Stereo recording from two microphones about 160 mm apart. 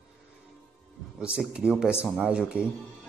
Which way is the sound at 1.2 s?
5° right (ahead or behind).